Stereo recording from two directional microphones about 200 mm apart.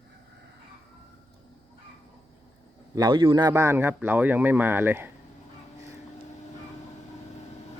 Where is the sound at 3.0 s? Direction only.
20° right (ahead or behind).